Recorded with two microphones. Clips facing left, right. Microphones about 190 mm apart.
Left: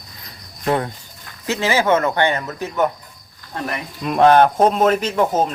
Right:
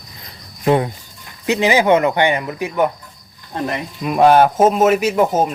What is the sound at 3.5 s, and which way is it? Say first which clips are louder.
Speech: right 4 dB; 20° right (ahead or behind).